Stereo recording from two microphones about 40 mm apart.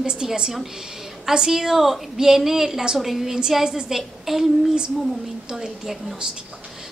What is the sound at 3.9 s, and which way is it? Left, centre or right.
Speech, centre.